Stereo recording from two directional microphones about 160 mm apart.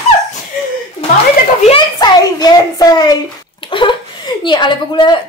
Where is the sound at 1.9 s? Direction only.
25° left (ahead or behind).